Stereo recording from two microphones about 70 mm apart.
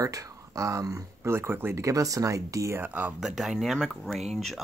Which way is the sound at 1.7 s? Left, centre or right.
Right.